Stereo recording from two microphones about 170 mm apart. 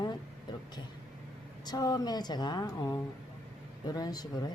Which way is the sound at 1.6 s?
25° left (ahead or behind).